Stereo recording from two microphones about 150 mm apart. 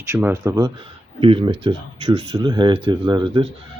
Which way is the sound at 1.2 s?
35° right (ahead or behind).